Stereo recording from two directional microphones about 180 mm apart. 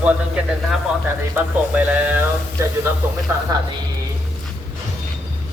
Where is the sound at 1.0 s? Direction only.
10° right (ahead or behind).